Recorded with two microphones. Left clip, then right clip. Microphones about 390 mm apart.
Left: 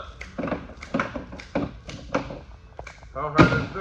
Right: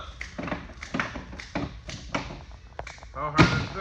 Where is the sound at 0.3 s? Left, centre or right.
Centre.